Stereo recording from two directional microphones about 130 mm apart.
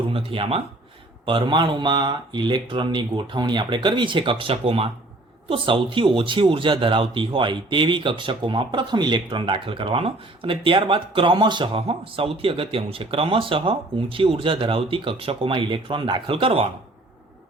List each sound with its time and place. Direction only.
0.1 s speech: 45° right (ahead or behind)